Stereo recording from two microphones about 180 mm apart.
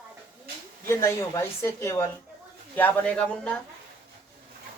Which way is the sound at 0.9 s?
15° left (ahead or behind).